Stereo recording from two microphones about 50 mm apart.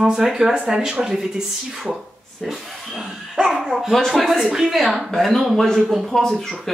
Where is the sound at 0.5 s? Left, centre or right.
Right; by 5.1 s centre.